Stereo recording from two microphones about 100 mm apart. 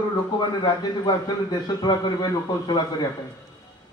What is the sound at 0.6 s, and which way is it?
A man's voice, 40° left (ahead or behind).